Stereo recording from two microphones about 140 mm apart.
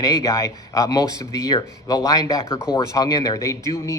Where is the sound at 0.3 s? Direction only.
20° left (ahead or behind).